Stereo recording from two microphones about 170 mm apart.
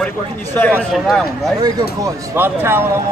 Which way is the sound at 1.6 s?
20° right (ahead or behind).